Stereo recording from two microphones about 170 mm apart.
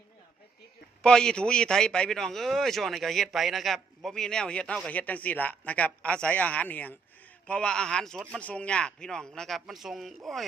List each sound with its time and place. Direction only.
1.0 s a man's voice: 5° left (ahead or behind)